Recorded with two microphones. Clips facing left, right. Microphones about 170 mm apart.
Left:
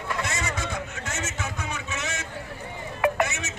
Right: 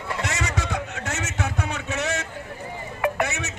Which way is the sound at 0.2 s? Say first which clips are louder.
Right 2 dB; 75° right (ahead or behind).